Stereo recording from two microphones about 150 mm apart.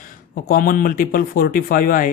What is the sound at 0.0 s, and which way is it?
Speech, 70° left (ahead or behind).